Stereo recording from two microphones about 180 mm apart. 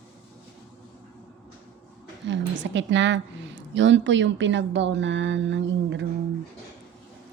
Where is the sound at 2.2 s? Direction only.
90° right.